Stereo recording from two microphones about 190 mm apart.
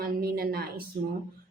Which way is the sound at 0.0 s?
50° right (ahead or behind).